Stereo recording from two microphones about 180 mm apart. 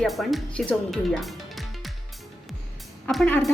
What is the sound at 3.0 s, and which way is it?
Speech, 5° left (ahead or behind).